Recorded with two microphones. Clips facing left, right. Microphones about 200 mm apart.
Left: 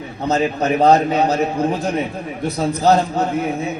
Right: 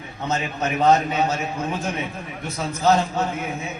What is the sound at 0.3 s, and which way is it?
A man's voice, 35° left (ahead or behind).